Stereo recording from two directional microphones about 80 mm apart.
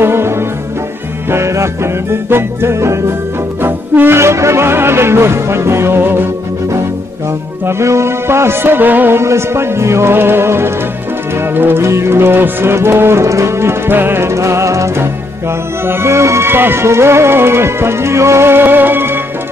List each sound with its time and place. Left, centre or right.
0.0 s music: right
7.6 s music: right